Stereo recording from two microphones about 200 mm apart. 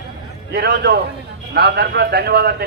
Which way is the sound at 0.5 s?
55° right (ahead or behind).